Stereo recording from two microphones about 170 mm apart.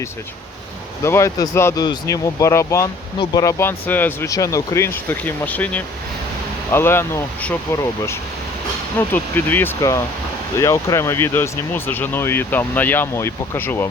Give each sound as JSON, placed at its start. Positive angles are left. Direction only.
{"t": 1.0, "sound": "speech", "side_deg": 15}